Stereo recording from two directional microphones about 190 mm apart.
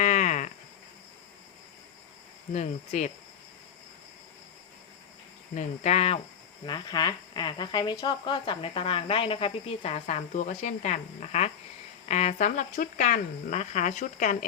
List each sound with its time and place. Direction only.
0.0 s insect: 40° left (ahead or behind)
2.5 s speech: 40° left (ahead or behind)
5.5 s speech: 35° left (ahead or behind)
6.7 s speech: 20° left (ahead or behind); by 14.3 s 40° left (ahead or behind)